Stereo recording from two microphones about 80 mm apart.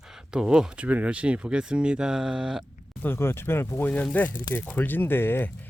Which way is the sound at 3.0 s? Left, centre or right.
Left.